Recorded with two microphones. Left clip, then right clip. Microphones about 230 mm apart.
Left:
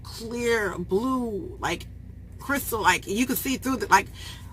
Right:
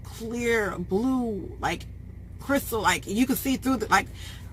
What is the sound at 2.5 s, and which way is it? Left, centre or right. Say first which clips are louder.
Speech: left 2 dB; centre.